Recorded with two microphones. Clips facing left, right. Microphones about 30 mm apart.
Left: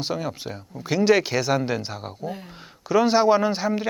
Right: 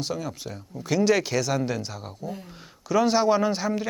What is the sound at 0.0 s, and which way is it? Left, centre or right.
Speech, left.